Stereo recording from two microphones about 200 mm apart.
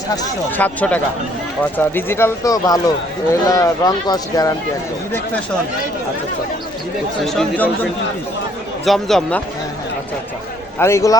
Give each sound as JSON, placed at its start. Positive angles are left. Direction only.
{"t": 0.2, "sound": "speech", "side_deg": 10}
{"t": 7.3, "sound": "speech", "side_deg": 5}
{"t": 10.8, "sound": "speech", "side_deg": 15}